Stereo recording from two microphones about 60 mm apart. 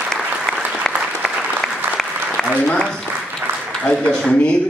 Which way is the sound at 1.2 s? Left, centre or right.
Centre.